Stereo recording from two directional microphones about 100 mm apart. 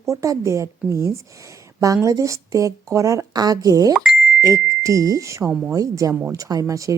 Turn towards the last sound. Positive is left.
turn(degrees=-35)  # may be behind; listen again after turning